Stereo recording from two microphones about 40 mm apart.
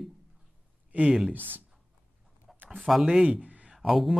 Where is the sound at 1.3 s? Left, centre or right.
Right.